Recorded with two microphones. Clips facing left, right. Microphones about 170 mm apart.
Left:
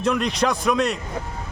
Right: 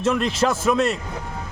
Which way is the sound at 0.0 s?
Centre (ahead or behind).